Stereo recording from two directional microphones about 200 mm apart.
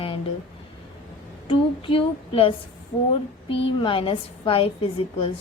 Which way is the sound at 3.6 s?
25° left (ahead or behind).